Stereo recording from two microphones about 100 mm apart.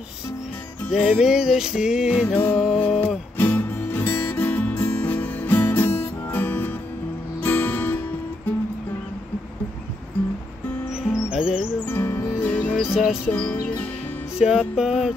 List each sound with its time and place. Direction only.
0.9 s music: 5° right (ahead or behind)
2.2 s music: 20° left (ahead or behind)
2.5 s mantra: centre (ahead or behind)
2.8 s music: 15° left (ahead or behind)
11.2 s music: 10° right (ahead or behind)
11.8 s music: 25° left (ahead or behind)
12.5 s music: 15° left (ahead or behind)
12.9 s music: 5° right (ahead or behind)
13.2 s music: 15° left (ahead or behind)
14.4 s music: 5° right (ahead or behind)
14.8 s mantra: 5° right (ahead or behind)